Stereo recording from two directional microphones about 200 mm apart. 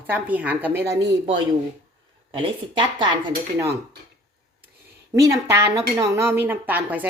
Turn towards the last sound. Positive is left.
turn(degrees=-10)  # may be behind; listen again after turning